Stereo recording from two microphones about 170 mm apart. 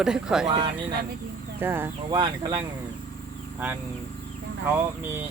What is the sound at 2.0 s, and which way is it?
Speech, 25° right (ahead or behind).